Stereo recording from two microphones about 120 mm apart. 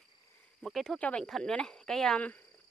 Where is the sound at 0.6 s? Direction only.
5° left (ahead or behind).